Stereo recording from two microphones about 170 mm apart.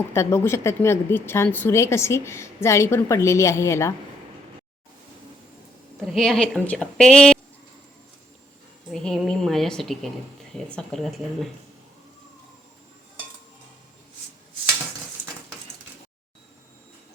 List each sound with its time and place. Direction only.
0.1 s speech: 15° left (ahead or behind)
6.1 s a woman's voice: centre (ahead or behind)
8.9 s a woman's voice: centre (ahead or behind)